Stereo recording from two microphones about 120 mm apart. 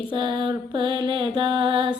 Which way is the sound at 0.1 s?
40° right (ahead or behind).